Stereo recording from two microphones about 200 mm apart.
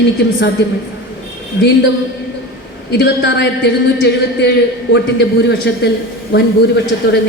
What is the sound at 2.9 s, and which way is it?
A man's voice, 55° left (ahead or behind).